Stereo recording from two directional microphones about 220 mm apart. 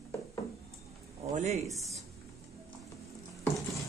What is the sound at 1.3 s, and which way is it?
Speech, 30° right (ahead or behind).